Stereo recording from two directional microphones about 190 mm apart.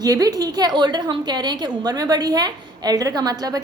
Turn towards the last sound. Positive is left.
turn(degrees=-20)  # may be behind; listen again after turning